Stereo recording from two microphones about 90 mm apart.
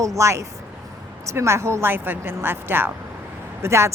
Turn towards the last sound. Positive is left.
turn(degrees=-30)  # may be behind; listen again after turning